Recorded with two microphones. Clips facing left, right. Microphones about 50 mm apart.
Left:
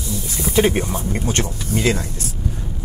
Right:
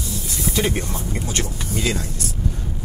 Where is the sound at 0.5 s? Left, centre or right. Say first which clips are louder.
Left 7 dB; left.